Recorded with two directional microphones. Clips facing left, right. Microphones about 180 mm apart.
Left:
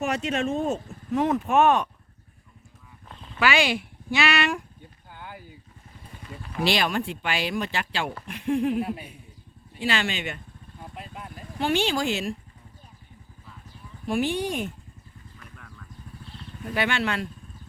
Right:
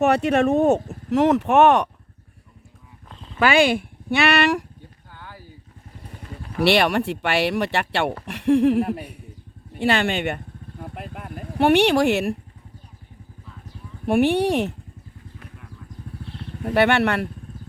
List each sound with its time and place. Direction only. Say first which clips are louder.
0.0 s speech: right 8 dB; 65° right (ahead or behind)
3.3 s speech: right 6 dB; 50° right (ahead or behind); by 4.6 s 65° right (ahead or behind)
5.1 s a sound: left 1 dB; 15° left (ahead or behind)
6.6 s speech: right 6 dB; 65° right (ahead or behind)
8.8 s speech: right 5 dB; 55° right (ahead or behind)
9.7 s vehicle: right 7 dB; 55° right (ahead or behind)
14.0 s speech: right 7 dB; 65° right (ahead or behind)
16.4 s speech: right 9 dB; 60° right (ahead or behind)